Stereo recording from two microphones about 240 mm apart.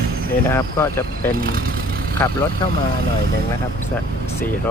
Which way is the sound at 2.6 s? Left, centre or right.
Centre.